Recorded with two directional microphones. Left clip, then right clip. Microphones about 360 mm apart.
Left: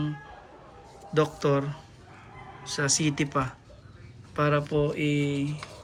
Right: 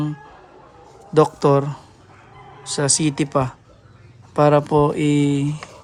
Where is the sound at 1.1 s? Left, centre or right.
Centre.